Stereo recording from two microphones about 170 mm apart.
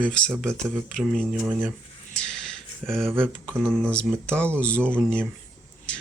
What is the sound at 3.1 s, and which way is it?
Speech, 5° left (ahead or behind).